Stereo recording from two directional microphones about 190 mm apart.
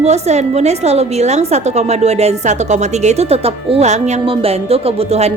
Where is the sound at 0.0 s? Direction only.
35° right (ahead or behind).